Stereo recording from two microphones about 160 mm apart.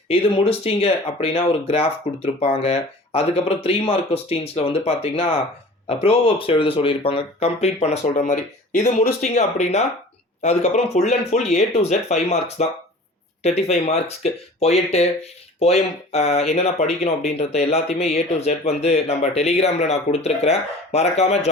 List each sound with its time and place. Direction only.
0.1 s speech: 40° left (ahead or behind)